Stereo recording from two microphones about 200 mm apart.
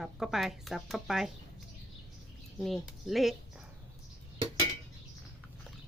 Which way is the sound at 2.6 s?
Centre (ahead or behind).